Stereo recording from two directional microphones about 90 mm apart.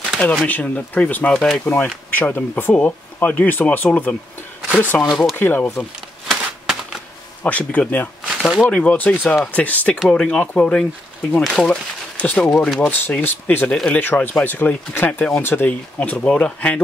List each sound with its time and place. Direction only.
0.5 s speech: 15° left (ahead or behind)
6.2 s a sound: 5° right (ahead or behind)
7.4 s speech: 15° left (ahead or behind)
8.4 s speech: 5° right (ahead or behind)
8.6 s speech: 15° left (ahead or behind)
9.9 s speech: 5° left (ahead or behind)
12.8 s speech: 15° left (ahead or behind)